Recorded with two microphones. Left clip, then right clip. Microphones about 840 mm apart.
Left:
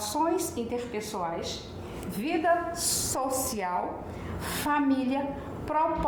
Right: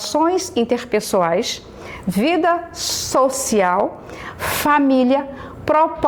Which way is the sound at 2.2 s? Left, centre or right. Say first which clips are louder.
Right 9 dB; right.